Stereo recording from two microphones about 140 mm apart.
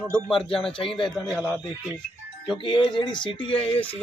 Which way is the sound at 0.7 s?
40° left (ahead or behind).